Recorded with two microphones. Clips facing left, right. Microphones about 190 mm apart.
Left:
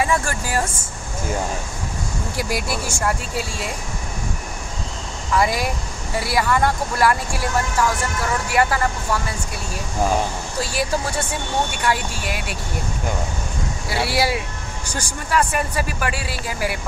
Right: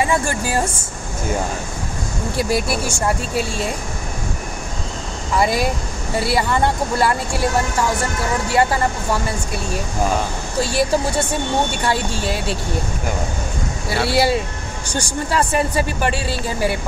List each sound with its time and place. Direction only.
0.1 s speech: 25° right (ahead or behind)
2.5 s speech: 25° right (ahead or behind)
5.3 s speech: 25° right (ahead or behind)
10.6 s speech: 25° right (ahead or behind)
13.8 s speech: 25° right (ahead or behind)